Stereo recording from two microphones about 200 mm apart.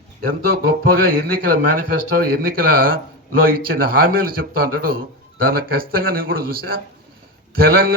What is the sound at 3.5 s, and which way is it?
Speech, 45° right (ahead or behind).